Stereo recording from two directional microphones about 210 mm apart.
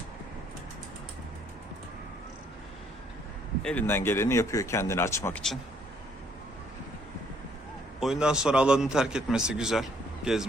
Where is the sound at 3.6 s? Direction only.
5° left (ahead or behind).